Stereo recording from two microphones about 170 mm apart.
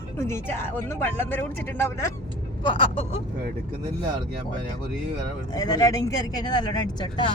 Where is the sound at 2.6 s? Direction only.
30° left (ahead or behind).